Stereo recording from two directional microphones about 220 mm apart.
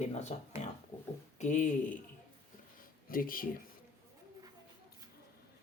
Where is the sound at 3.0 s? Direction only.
40° left (ahead or behind).